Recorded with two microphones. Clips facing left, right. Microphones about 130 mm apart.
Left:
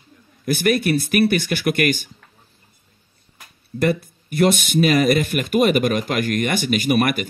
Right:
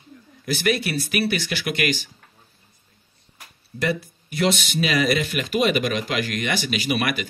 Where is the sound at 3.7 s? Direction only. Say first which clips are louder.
Left 5 dB; 50° left (ahead or behind).